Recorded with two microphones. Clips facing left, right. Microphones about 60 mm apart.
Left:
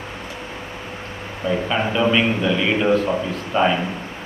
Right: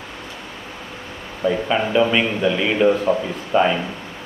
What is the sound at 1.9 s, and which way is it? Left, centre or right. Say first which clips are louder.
A man's voice: even; centre.